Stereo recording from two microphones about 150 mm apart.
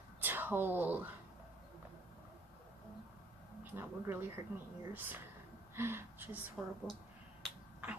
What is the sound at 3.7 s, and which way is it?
A woman's voice, 15° right (ahead or behind).